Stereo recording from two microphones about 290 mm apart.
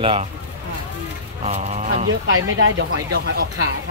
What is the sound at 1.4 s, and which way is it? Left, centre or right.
Speech, right.